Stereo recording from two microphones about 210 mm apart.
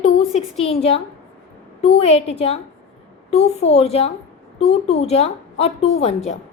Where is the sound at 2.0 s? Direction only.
30° left (ahead or behind).